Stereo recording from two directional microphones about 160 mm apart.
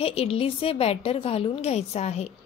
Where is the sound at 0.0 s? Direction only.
40° left (ahead or behind).